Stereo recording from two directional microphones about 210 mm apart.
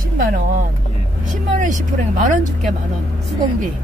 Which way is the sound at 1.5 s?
35° right (ahead or behind).